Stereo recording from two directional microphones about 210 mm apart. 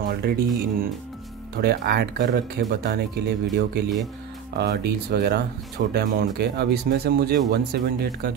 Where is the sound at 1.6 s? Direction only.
50° right (ahead or behind).